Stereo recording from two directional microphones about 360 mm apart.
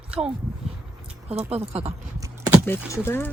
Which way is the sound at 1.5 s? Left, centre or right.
Centre.